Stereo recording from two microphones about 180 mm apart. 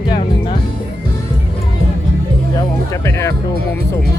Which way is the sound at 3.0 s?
15° left (ahead or behind).